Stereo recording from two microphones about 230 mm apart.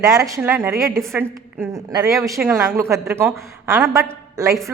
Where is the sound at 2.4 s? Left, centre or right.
Centre.